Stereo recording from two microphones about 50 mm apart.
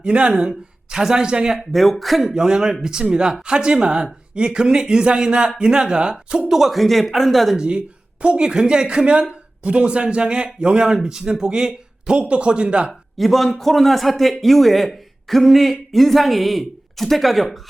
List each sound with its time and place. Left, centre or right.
0.0 s speech: right
1.7 s speech: centre
2.3 s speech: centre
6.5 s speech: centre
7.5 s a man's voice: centre
12.9 s speech: centre